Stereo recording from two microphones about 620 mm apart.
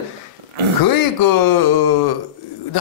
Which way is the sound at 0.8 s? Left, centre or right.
Left.